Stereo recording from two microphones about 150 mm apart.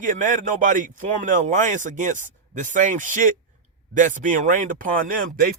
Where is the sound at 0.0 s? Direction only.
60° right (ahead or behind).